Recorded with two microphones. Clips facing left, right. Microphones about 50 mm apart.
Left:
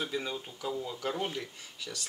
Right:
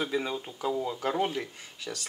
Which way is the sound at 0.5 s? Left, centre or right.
Right.